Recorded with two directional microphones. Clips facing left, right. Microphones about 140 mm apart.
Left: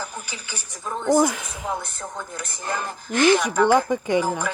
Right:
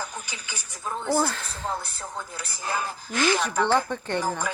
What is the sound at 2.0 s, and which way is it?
A woman's voice, 50° left (ahead or behind).